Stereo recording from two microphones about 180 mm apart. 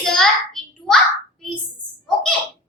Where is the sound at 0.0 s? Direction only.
5° left (ahead or behind).